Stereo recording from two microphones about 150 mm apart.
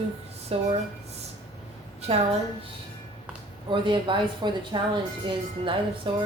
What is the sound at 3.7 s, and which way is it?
Speech, 30° right (ahead or behind).